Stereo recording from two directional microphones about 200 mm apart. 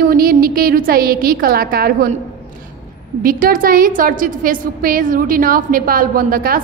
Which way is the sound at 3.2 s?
45° right (ahead or behind).